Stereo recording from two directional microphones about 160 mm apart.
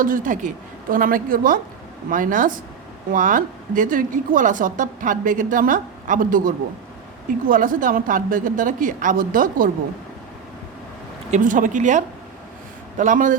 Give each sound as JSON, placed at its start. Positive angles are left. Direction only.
{"t": 0.0, "sound": "a woman's voice", "side_deg": -55}
{"t": 11.3, "sound": "speech", "side_deg": -55}